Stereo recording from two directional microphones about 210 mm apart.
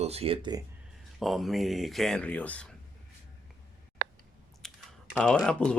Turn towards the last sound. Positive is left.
turn(degrees=5)  # may be behind; listen again after turning